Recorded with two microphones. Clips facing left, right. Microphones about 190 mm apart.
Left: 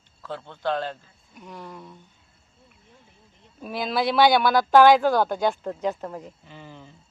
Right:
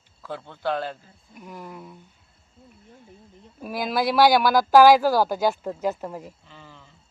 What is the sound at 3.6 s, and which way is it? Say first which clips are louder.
Speech: right 1 dB; 10° right (ahead or behind).